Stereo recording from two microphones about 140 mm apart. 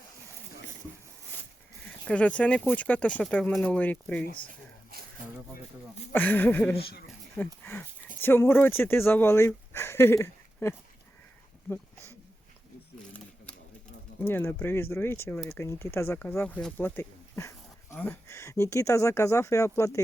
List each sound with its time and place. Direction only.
1.8 s speech: 10° left (ahead or behind)
4.9 s a sound: 90° right
6.1 s speech: 15° left (ahead or behind)
14.2 s speech: 15° left (ahead or behind)